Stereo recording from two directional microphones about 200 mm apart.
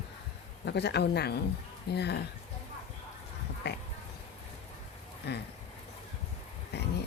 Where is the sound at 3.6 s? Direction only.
55° left (ahead or behind).